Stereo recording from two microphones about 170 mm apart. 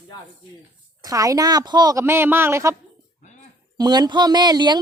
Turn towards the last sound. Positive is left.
turn(degrees=-25)  # may be behind; listen again after turning